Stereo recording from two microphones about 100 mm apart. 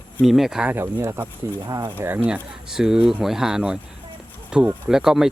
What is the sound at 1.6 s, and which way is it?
Speech, 40° right (ahead or behind).